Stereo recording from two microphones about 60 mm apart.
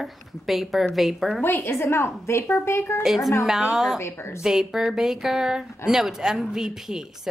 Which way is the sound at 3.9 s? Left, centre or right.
Left.